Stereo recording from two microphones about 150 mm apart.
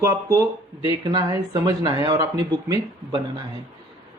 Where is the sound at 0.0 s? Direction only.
20° right (ahead or behind).